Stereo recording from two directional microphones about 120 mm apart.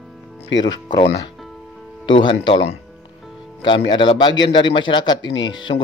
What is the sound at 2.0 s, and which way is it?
Speech, 40° left (ahead or behind).